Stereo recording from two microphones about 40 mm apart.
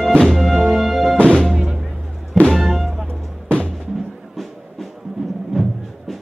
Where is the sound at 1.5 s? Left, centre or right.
Centre.